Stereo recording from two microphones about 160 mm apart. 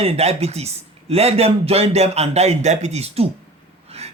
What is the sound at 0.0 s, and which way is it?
Speech, 40° right (ahead or behind).